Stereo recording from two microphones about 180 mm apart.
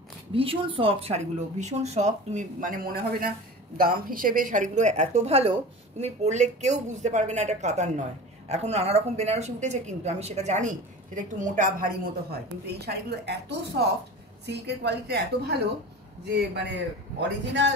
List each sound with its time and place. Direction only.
0.3 s a woman's voice: 30° right (ahead or behind); by 16.8 s 65° right (ahead or behind)
17.5 s speech: 80° right